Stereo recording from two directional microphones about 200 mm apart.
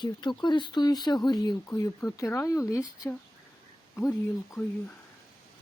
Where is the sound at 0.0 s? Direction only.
20° left (ahead or behind).